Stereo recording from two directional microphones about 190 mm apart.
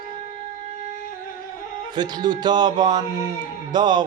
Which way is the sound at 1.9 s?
20° right (ahead or behind).